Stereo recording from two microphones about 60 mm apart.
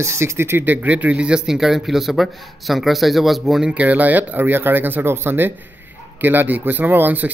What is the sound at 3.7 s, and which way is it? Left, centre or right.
Speech, right.